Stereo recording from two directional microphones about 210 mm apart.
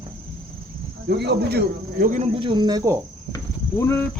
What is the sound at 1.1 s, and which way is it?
Speech, 55° right (ahead or behind).